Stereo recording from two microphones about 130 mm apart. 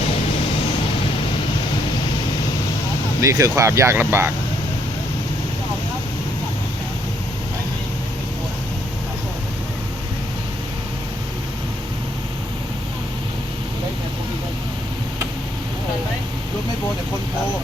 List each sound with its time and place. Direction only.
3.2 s speech: 25° right (ahead or behind)